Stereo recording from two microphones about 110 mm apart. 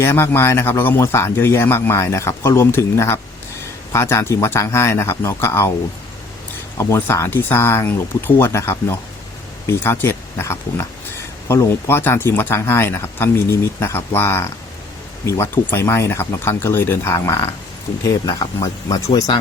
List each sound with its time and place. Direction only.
0.0 s speech: 25° left (ahead or behind)
6.7 s speech: 25° left (ahead or behind)